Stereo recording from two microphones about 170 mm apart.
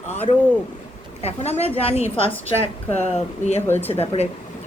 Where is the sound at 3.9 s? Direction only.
40° left (ahead or behind).